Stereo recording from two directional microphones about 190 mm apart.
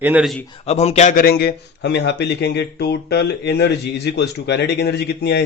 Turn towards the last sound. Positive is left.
turn(degrees=60)  # may be behind; listen again after turning